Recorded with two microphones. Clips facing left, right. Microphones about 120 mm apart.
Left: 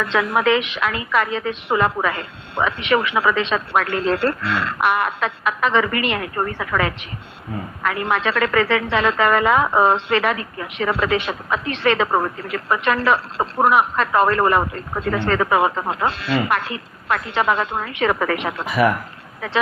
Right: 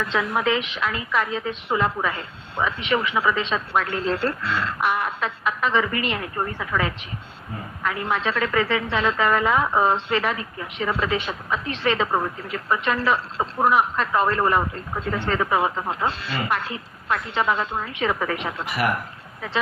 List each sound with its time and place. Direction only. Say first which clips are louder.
0.1 s a woman's voice: left 6 dB; 70° left (ahead or behind)